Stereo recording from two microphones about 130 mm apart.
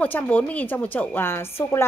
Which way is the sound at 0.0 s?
15° left (ahead or behind).